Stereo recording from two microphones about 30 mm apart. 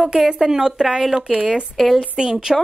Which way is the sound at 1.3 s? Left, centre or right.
Right.